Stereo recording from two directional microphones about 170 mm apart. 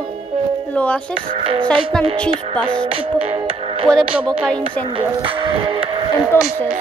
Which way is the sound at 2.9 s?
35° right (ahead or behind).